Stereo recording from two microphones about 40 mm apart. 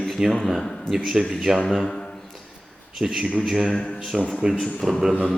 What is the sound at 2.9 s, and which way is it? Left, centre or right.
Speech, centre.